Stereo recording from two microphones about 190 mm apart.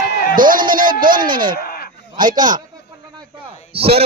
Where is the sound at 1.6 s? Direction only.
50° left (ahead or behind).